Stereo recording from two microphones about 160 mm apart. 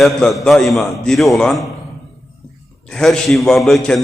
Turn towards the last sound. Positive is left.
turn(degrees=0)  # may be behind; listen again after turning